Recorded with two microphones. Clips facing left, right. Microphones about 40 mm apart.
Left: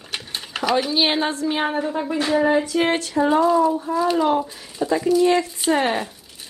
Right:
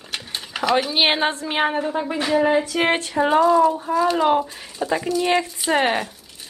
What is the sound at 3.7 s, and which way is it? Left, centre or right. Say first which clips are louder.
Speech: even; right.